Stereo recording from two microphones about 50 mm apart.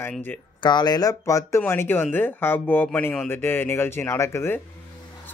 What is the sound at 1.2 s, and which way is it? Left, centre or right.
Speech, left.